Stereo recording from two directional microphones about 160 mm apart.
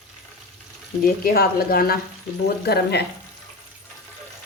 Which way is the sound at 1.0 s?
70° left (ahead or behind).